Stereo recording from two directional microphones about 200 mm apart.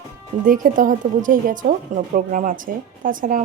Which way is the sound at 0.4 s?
45° right (ahead or behind).